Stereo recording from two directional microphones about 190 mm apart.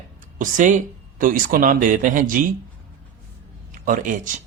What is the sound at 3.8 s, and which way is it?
Speech, 45° right (ahead or behind).